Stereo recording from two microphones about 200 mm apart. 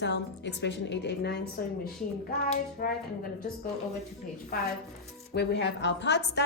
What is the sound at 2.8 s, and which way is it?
Speech, 45° left (ahead or behind).